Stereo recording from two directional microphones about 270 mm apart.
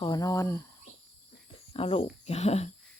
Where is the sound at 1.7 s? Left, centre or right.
Centre.